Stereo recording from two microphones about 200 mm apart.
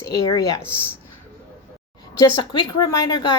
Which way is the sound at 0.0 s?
15° left (ahead or behind).